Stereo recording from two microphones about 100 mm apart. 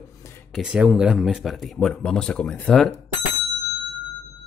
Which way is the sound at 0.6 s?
10° right (ahead or behind).